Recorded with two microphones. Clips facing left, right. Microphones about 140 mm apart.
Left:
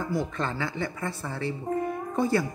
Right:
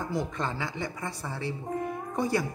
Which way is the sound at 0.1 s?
15° right (ahead or behind).